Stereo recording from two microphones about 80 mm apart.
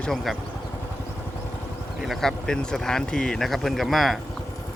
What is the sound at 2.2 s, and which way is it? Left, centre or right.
Speech, centre.